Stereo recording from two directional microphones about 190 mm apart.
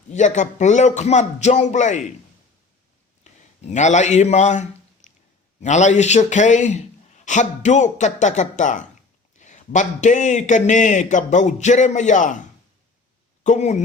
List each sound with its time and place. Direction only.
0.1 s a man's voice: 40° left (ahead or behind)
3.3 s a sound: 40° left (ahead or behind)
3.6 s a man's voice: 40° left (ahead or behind)
13.4 s speech: 40° left (ahead or behind)